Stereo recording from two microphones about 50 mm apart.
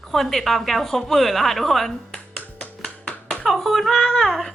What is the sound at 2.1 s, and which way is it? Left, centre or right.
Finger snapping, left.